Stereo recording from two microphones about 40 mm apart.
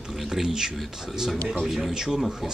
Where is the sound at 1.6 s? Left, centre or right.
Centre.